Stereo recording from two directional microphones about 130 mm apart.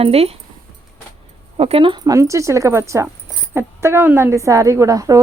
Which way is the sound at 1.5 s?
50° right (ahead or behind).